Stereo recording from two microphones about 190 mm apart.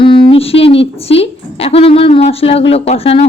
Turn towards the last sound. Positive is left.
turn(degrees=30)  # may be behind; listen again after turning